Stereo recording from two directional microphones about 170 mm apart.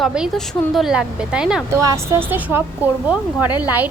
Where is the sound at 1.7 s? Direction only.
20° right (ahead or behind).